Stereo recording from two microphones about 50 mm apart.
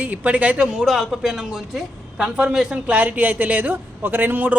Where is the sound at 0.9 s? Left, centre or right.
Centre.